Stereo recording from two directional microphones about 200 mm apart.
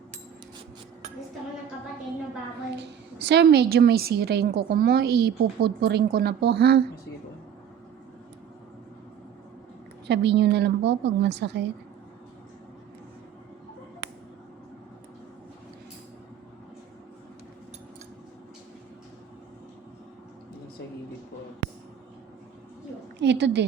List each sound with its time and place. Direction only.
2.7 s a woman's voice: 55° right (ahead or behind)
10.1 s a woman's voice: 60° right (ahead or behind)
23.1 s a woman's voice: 60° right (ahead or behind)